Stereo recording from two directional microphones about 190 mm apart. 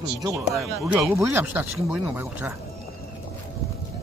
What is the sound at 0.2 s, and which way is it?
Speech, 15° right (ahead or behind).